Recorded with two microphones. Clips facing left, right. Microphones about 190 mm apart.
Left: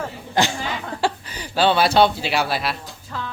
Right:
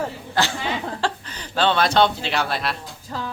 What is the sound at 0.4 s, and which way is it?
Speech, 15° left (ahead or behind).